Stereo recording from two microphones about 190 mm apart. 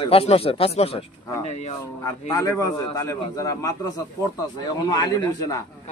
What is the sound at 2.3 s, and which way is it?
A man's voice, 20° left (ahead or behind).